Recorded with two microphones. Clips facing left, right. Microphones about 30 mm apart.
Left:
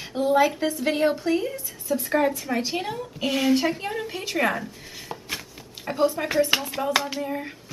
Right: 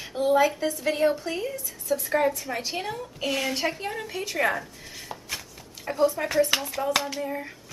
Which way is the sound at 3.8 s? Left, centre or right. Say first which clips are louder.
Left 2 dB; centre.